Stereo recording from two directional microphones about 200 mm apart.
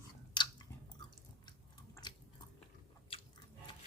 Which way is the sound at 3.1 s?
30° left (ahead or behind).